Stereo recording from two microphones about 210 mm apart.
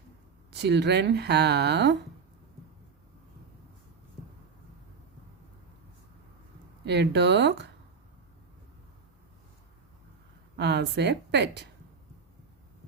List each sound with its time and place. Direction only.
0.5 s speech: 55° right (ahead or behind)
6.8 s speech: 55° right (ahead or behind)
10.6 s speech: 55° right (ahead or behind)